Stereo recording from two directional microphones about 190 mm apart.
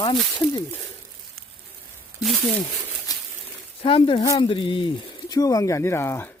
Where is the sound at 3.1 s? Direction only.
20° left (ahead or behind).